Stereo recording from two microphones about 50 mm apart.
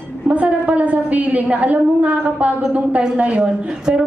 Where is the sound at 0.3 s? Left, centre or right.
Right.